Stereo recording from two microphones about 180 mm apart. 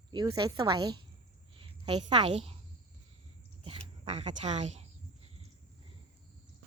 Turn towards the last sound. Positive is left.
turn(degrees=-40)  # may be behind; listen again after turning